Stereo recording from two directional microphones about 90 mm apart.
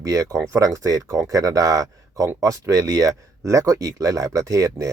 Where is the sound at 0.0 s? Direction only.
40° right (ahead or behind).